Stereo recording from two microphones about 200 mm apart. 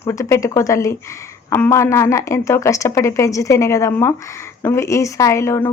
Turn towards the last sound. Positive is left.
turn(degrees=15)  # may be behind; listen again after turning